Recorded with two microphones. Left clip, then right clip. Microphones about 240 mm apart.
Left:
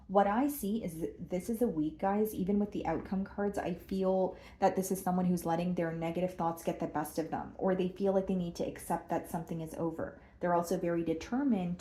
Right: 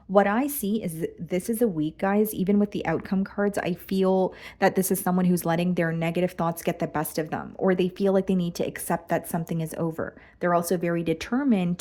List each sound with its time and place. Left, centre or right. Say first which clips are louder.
0.1 s speech: right 7 dB; right